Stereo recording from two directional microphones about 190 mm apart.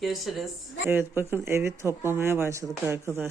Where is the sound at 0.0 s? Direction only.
Centre (ahead or behind).